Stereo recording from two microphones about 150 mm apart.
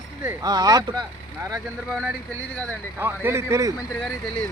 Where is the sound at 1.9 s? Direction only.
Centre (ahead or behind).